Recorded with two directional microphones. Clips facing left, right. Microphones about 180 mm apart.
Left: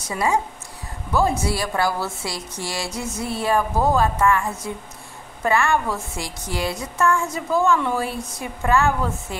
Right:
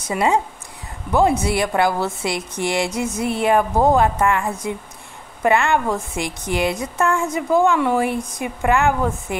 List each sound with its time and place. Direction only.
0.1 s speech: 25° right (ahead or behind)
1.4 s a woman's voice: 20° right (ahead or behind)